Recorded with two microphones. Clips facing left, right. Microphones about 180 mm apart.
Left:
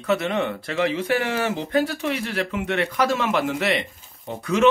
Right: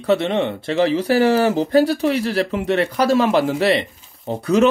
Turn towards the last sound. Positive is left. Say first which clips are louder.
# right 4 dB
turn(degrees=-35)  # may be behind; listen again after turning